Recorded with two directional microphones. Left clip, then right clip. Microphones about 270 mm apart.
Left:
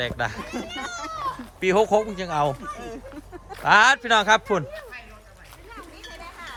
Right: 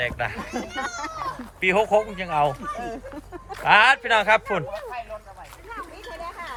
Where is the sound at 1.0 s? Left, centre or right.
Centre.